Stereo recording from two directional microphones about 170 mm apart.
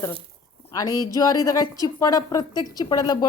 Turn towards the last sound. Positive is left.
turn(degrees=25)  # may be behind; listen again after turning